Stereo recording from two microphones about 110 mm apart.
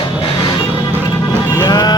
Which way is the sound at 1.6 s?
40° left (ahead or behind).